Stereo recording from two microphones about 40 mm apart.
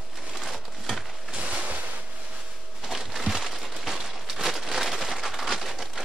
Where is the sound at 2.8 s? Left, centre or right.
Centre.